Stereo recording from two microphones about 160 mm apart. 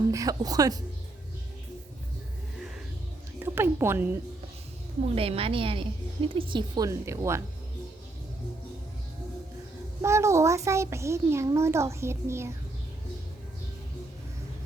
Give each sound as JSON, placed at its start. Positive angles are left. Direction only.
{"t": 0.1, "sound": "speech", "side_deg": -20}
{"t": 3.4, "sound": "a woman's voice", "side_deg": -15}
{"t": 5.1, "sound": "a woman's voice", "side_deg": -35}
{"t": 10.0, "sound": "a child's voice", "side_deg": -15}